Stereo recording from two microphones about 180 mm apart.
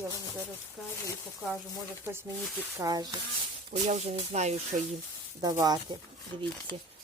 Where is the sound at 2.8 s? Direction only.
20° right (ahead or behind).